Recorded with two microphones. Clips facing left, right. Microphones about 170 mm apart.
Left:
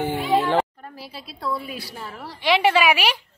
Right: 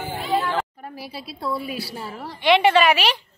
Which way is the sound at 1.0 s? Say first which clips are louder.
Right 3 dB; 10° right (ahead or behind).